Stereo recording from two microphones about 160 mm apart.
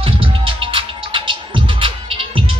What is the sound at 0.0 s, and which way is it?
Music, 35° right (ahead or behind).